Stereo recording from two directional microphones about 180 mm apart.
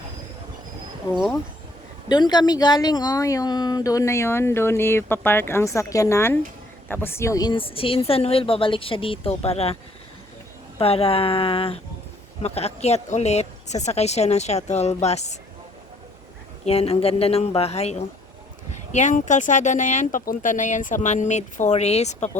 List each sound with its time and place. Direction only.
2.0 s speech: 25° left (ahead or behind)
10.8 s speech: 30° left (ahead or behind)
16.6 s speech: 35° left (ahead or behind)